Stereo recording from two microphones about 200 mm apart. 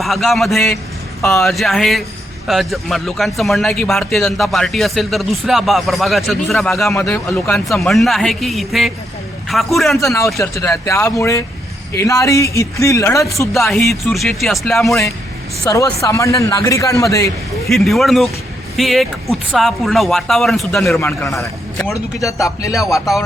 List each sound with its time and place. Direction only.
0.0 s a man's voice: centre (ahead or behind)
10.0 s a man's voice: 15° left (ahead or behind)
13.7 s a man's voice: centre (ahead or behind)
15.6 s a man's voice: 15° left (ahead or behind)
17.7 s a man's voice: centre (ahead or behind)